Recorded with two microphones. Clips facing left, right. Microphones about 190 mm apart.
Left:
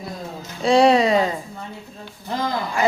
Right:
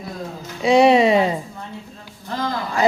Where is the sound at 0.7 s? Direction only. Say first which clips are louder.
Right 2 dB; 20° right (ahead or behind).